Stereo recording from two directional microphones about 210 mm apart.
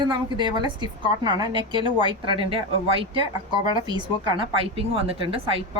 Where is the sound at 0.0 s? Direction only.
20° right (ahead or behind).